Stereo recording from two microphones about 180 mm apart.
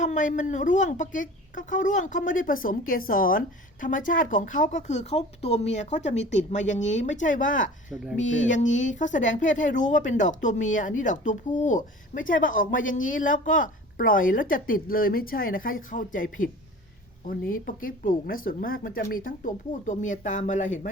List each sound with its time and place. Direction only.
0.0 s a woman's voice: 45° left (ahead or behind)
7.9 s speech: centre (ahead or behind)
8.2 s speech: 90° left
8.4 s a woman's voice: 45° left (ahead or behind)
17.5 s a woman's voice: 50° left (ahead or behind)